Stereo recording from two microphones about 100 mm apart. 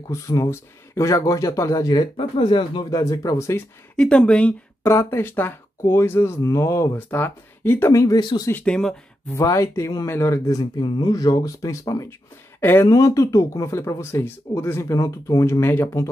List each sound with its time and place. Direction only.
0.1 s speech: 30° left (ahead or behind)
2.0 s speech: 60° left (ahead or behind)
2.9 s speech: 35° left (ahead or behind)
3.9 s speech: 10° left (ahead or behind)
4.8 s speech: 25° left (ahead or behind)
7.9 s speech: 35° left (ahead or behind)
8.2 s speech: 50° left (ahead or behind)
8.6 s speech: 5° left (ahead or behind)
9.3 s speech: 30° left (ahead or behind)
10.8 s speech: 45° left (ahead or behind)
12.5 s a sound: 20° left (ahead or behind)
12.8 s speech: 35° left (ahead or behind)